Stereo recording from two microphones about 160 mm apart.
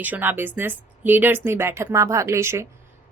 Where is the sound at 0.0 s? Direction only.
10° right (ahead or behind).